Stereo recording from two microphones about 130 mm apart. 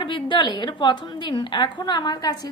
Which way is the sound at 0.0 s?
40° left (ahead or behind).